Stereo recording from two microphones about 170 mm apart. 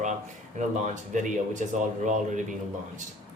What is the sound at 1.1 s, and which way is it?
Speech, 45° right (ahead or behind).